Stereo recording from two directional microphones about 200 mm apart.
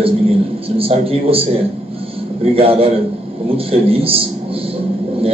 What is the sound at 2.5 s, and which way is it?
A man's voice, 30° right (ahead or behind).